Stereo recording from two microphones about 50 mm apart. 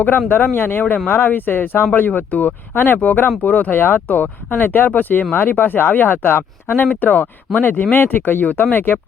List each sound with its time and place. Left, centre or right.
0.5 s speech: left
7.0 s speech: left